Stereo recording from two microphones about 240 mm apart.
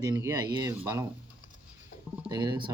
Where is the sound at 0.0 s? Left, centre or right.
Centre.